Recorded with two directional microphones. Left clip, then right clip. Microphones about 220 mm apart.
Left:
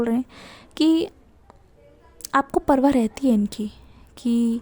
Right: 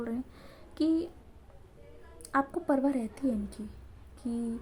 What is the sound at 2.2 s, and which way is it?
A woman's voice, 40° left (ahead or behind).